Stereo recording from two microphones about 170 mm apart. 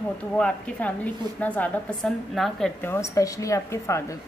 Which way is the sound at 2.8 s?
15° left (ahead or behind).